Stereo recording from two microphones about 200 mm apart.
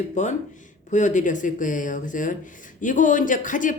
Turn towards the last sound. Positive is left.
turn(degrees=40)  # may be behind; listen again after turning